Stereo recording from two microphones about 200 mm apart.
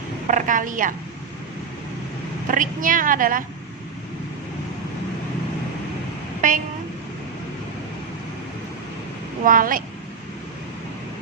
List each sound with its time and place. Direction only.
0.3 s a woman's voice: 40° right (ahead or behind)
2.5 s a woman's voice: 40° right (ahead or behind)
6.4 s a woman's voice: 40° right (ahead or behind)
9.4 s a woman's voice: 45° right (ahead or behind)